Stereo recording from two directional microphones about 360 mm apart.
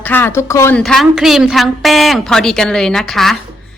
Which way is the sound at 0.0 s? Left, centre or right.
Centre.